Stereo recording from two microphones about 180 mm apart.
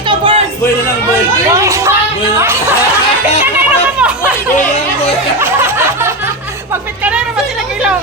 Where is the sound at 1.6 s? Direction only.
15° right (ahead or behind).